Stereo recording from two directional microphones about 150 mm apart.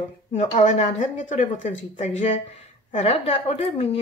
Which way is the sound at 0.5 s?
45° left (ahead or behind).